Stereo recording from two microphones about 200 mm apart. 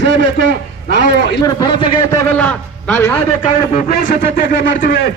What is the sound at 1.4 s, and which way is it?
Speech, 20° left (ahead or behind).